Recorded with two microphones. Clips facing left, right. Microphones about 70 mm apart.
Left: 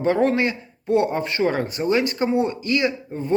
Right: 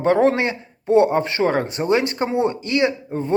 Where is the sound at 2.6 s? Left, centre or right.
Right.